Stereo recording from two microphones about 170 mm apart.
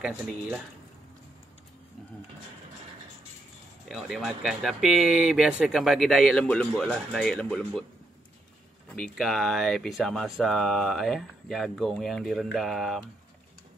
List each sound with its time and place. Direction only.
3.9 s speech: centre (ahead or behind)
9.0 s speech: centre (ahead or behind)